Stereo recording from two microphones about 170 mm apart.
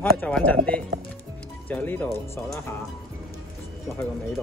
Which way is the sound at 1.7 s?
10° left (ahead or behind).